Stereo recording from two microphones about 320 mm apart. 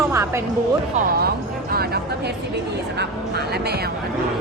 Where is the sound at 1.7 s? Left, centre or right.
Right.